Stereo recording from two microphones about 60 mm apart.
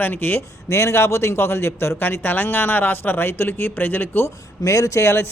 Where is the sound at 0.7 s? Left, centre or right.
Left.